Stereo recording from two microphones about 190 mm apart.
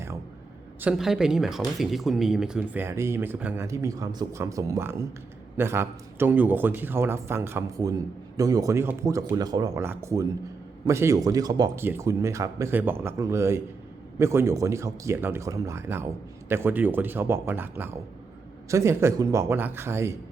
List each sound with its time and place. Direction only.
0.8 s speech: 5° right (ahead or behind)